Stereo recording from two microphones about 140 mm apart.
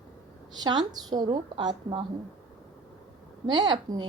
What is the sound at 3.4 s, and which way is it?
Speech, 30° right (ahead or behind).